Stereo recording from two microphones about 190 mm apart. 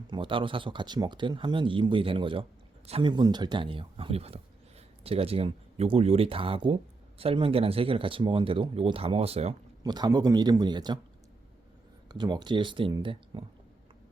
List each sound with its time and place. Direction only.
0.1 s speech: 25° right (ahead or behind)
9.8 s speech: 20° right (ahead or behind)
12.0 s speech: 25° right (ahead or behind)